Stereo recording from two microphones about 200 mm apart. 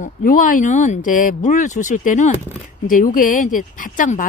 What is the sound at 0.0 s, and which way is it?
Speech, 40° left (ahead or behind).